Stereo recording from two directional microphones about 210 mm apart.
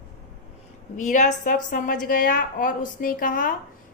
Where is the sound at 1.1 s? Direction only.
35° left (ahead or behind).